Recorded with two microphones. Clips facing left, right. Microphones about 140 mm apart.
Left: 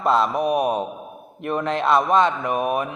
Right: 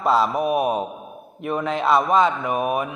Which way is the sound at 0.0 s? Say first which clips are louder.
Even; centre (ahead or behind).